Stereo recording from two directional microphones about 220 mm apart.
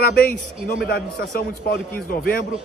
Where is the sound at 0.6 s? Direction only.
45° left (ahead or behind).